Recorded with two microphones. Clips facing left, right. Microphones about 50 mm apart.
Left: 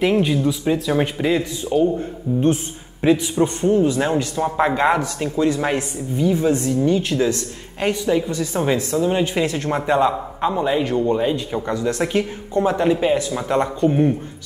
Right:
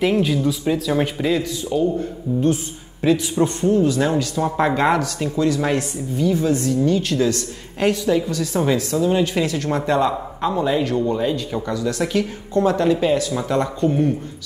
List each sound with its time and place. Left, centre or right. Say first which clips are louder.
0.0 s speech: left 1 dB; centre
1.3 s speech: left 1 dB; left
4.4 s speech: even; centre